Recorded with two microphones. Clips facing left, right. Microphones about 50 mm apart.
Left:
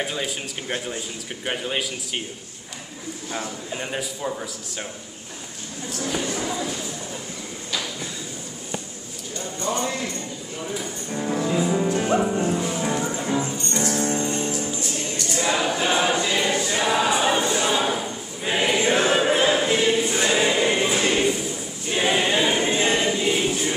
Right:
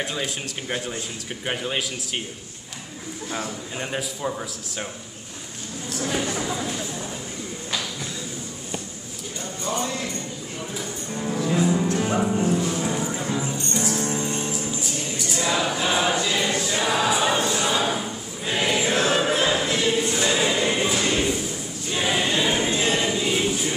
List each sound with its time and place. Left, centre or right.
0.0 s a man's voice: centre
3.3 s a man's voice: centre
6.0 s speech: centre
10.7 s speech: centre
11.5 s music: centre
12.0 s a man's voice: centre
14.3 s music: centre
15.3 s choir: centre
17.2 s a sound: centre
18.9 s choir: centre
23.2 s music: centre